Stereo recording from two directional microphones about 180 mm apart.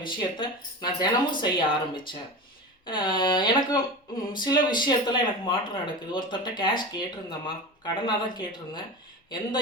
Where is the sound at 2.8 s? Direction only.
25° left (ahead or behind).